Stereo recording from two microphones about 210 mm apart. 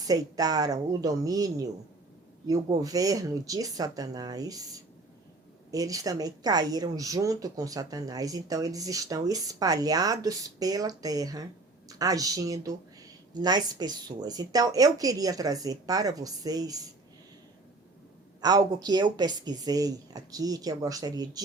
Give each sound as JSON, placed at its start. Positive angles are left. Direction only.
{"t": 0.1, "sound": "a woman's voice", "side_deg": -20}
{"t": 18.4, "sound": "a woman's voice", "side_deg": -20}